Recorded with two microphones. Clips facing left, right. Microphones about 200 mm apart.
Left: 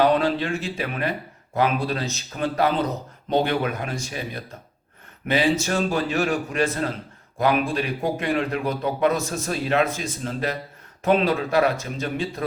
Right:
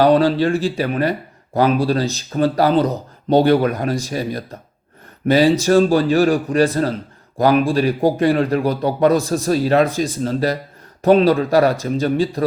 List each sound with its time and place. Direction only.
0.0 s speech: 35° right (ahead or behind)